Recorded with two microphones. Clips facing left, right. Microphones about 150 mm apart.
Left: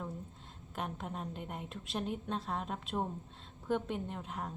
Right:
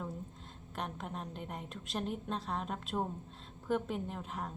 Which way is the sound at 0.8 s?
Centre (ahead or behind).